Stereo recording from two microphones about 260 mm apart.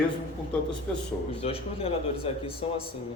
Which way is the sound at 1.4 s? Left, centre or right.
Left.